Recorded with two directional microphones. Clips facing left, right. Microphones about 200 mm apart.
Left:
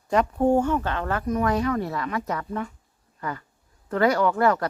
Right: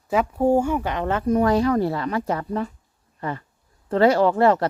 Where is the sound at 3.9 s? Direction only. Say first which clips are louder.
Right 4 dB; 30° right (ahead or behind).